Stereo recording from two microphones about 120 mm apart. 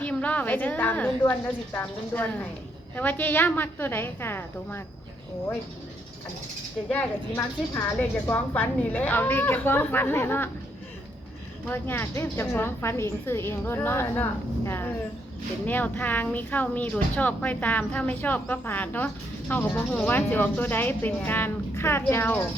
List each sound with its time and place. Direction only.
0.0 s speech: 10° left (ahead or behind)
6.8 s speech: 15° left (ahead or behind)
7.3 s speech: 25° left (ahead or behind)
11.7 s speech: 15° left (ahead or behind)